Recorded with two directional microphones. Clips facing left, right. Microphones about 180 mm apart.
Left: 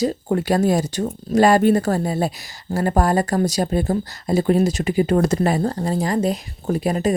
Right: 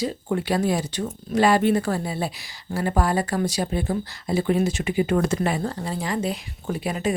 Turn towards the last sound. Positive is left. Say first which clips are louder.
# left 6 dB
turn(degrees=40)  # may be behind; listen again after turning